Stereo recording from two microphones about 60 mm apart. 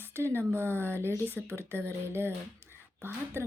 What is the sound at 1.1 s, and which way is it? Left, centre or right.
Speech, left.